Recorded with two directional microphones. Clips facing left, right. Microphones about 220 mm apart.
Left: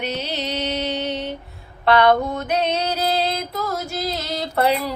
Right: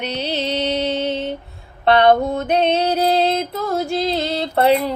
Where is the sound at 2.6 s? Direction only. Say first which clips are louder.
Right 5 dB; 55° right (ahead or behind).